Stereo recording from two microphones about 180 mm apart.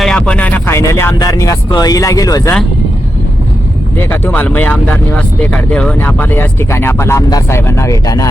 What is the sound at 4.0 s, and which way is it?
Speech, 10° left (ahead or behind).